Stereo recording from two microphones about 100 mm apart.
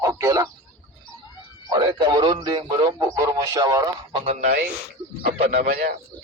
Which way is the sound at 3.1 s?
35° right (ahead or behind).